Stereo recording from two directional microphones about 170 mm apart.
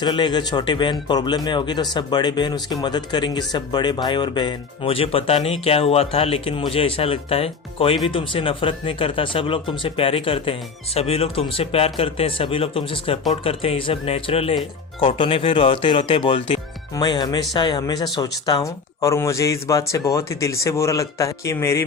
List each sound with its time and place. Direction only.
0.0 s speech: 25° left (ahead or behind)